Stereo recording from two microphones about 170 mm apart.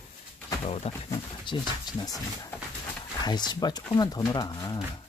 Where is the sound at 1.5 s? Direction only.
25° left (ahead or behind).